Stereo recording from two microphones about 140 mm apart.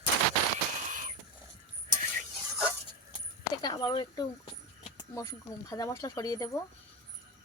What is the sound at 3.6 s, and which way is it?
Speech, 30° left (ahead or behind).